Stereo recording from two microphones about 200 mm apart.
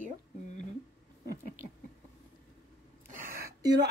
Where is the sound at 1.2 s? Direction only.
45° right (ahead or behind).